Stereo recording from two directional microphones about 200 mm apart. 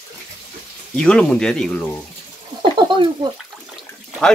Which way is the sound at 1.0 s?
5° left (ahead or behind).